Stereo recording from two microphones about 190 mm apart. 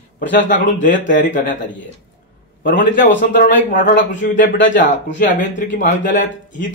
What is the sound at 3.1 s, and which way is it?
Speech, 65° left (ahead or behind).